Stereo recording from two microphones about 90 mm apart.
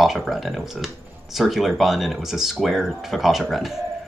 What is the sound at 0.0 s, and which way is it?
Speech, centre (ahead or behind).